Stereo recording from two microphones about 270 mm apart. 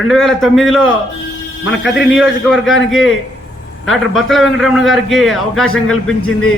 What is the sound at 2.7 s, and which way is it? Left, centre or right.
Speech, left.